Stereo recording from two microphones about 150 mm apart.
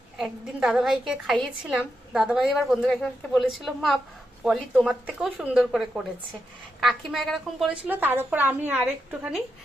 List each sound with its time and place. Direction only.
0.2 s a woman's voice: centre (ahead or behind)
7.9 s a woman's voice: 15° right (ahead or behind)